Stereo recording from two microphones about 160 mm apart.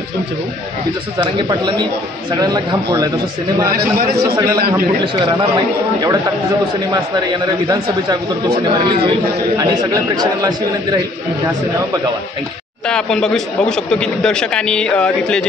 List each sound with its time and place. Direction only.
1.2 s a man's voice: 30° right (ahead or behind)
5.0 s speech: 30° right (ahead or behind)
6.9 s a man's voice: 25° right (ahead or behind)
12.8 s speech: 5° left (ahead or behind)